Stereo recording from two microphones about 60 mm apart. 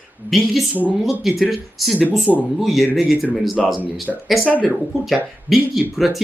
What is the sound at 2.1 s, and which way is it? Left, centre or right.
Speech, left.